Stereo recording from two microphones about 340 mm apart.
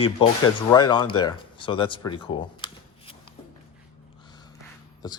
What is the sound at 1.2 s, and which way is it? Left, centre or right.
Shuffling cards, centre.